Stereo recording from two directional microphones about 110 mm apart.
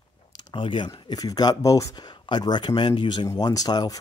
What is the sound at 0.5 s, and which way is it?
Speech, 50° left (ahead or behind).